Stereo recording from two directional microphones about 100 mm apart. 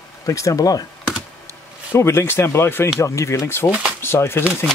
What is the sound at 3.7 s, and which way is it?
Speech, 10° right (ahead or behind).